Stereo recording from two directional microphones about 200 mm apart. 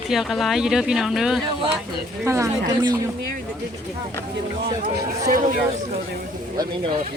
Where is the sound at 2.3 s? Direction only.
15° right (ahead or behind).